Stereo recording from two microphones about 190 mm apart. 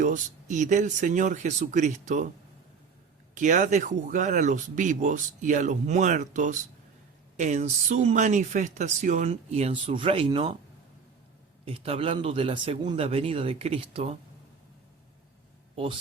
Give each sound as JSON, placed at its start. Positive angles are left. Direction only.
{"t": 0.0, "sound": "speech", "side_deg": -40}
{"t": 3.3, "sound": "speech", "side_deg": -40}
{"t": 11.6, "sound": "a man's voice", "side_deg": -30}
{"t": 15.7, "sound": "speech", "side_deg": -25}